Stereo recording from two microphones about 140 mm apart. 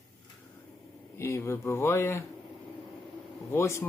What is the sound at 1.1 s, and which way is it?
Speech, 20° left (ahead or behind).